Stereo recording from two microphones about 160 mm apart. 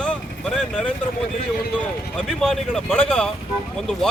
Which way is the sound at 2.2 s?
5° left (ahead or behind).